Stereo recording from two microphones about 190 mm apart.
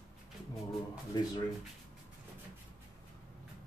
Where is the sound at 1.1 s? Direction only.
20° left (ahead or behind).